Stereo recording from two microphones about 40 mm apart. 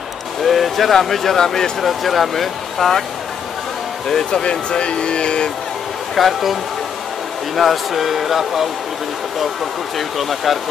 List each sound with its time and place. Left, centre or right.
0.4 s speech: centre
4.1 s speech: centre
6.1 s speech: centre
9.9 s speech: centre